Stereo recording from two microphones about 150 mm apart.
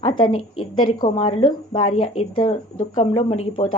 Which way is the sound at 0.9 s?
35° left (ahead or behind).